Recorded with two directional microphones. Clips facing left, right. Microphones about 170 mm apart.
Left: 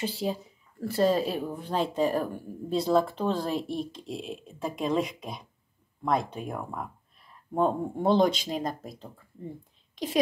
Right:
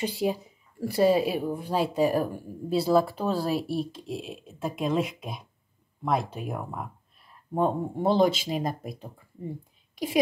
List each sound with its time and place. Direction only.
0.0 s a woman's voice: 15° right (ahead or behind)